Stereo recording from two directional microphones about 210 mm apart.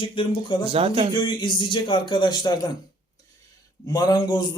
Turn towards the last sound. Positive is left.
turn(degrees=20)  # may be behind; listen again after turning